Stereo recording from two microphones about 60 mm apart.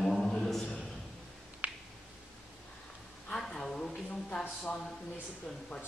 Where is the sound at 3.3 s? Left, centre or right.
Centre.